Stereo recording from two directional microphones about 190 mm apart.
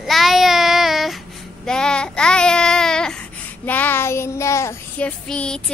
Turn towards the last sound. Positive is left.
turn(degrees=5)  # may be behind; listen again after turning